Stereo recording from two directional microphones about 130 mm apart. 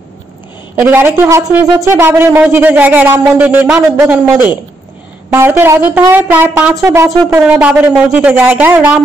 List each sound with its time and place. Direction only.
0.7 s speech: 15° right (ahead or behind)
6.8 s a sound: 20° right (ahead or behind)
7.4 s speech: 10° right (ahead or behind)